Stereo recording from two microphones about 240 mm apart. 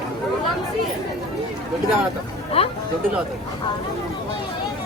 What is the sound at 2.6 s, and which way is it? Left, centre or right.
Speech, left.